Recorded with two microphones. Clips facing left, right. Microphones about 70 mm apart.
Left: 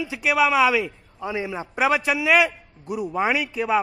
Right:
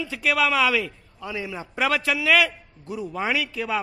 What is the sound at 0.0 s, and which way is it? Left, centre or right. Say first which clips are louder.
A man's voice: left 2 dB; centre.